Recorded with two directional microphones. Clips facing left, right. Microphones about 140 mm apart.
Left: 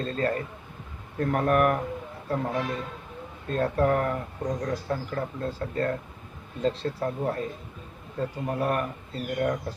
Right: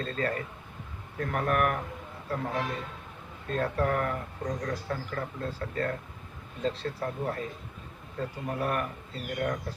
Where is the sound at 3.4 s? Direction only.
30° left (ahead or behind).